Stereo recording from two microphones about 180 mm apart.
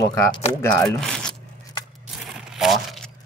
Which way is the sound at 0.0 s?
25° left (ahead or behind).